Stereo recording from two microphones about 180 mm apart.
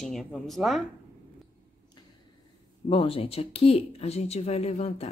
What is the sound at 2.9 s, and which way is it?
Speech, 30° left (ahead or behind).